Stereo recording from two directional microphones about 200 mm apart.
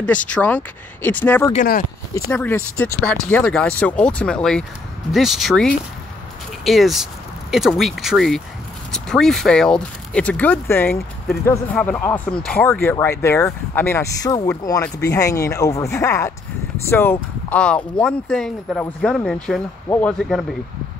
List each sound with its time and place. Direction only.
0.3 s speech: 10° left (ahead or behind)
1.5 s speech: 40° left (ahead or behind)
2.1 s speech: 10° left (ahead or behind)